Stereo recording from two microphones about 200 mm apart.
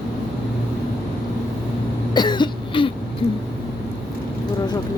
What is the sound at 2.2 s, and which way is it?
Cough, 20° left (ahead or behind).